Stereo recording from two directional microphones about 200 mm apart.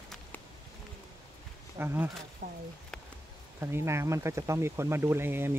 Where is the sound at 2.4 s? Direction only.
45° right (ahead or behind).